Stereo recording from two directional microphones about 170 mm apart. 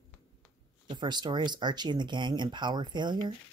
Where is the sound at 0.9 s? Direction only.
25° right (ahead or behind).